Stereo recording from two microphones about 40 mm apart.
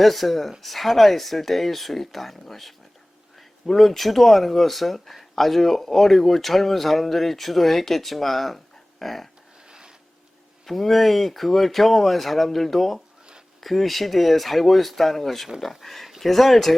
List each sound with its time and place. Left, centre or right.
0.0 s speech: centre
9.6 s rub: right
10.7 s speech: centre